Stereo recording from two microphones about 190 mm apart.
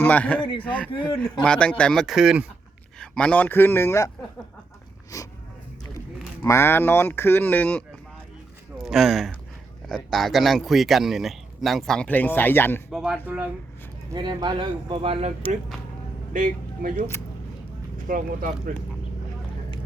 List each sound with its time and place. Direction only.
0.0 s speech: 10° left (ahead or behind)
0.9 s a man's voice: 25° left (ahead or behind)
1.5 s speech: 5° left (ahead or behind)
5.1 s speech: 20° left (ahead or behind)
6.4 s speech: 15° left (ahead or behind)
12.9 s speech: 5° right (ahead or behind)
14.1 s speech: 25° right (ahead or behind)
16.3 s speech: 45° right (ahead or behind)
18.1 s speech: 45° right (ahead or behind)